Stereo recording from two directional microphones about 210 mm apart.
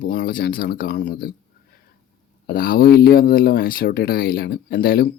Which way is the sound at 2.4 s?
45° left (ahead or behind).